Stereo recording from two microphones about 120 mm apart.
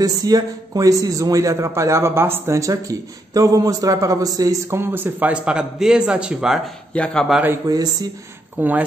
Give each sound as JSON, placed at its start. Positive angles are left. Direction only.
{"t": 0.0, "sound": "a man's voice", "side_deg": -30}
{"t": 6.9, "sound": "speech", "side_deg": 10}
{"t": 7.6, "sound": "speech", "side_deg": -30}
{"t": 8.5, "sound": "speech", "side_deg": -15}